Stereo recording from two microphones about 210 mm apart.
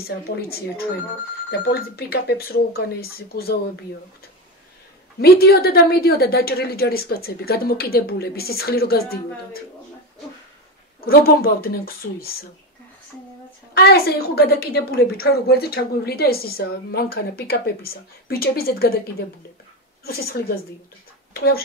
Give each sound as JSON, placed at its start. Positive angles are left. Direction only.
{"t": 0.0, "sound": "a woman's voice", "side_deg": 45}
{"t": 5.2, "sound": "a woman's voice", "side_deg": 50}
{"t": 11.0, "sound": "a woman's voice", "side_deg": 45}
{"t": 13.7, "sound": "a woman's voice", "side_deg": 50}
{"t": 20.1, "sound": "a woman's voice", "side_deg": 45}